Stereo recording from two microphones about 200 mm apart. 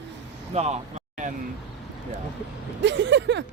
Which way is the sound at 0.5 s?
35° right (ahead or behind).